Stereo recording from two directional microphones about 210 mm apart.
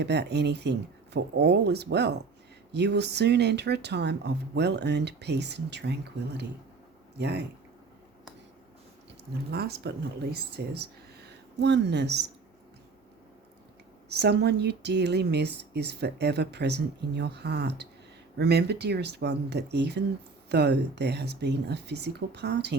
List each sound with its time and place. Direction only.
0.0 s speech: 55° right (ahead or behind)
9.5 s speech: 50° right (ahead or behind)
14.1 s speech: 50° right (ahead or behind)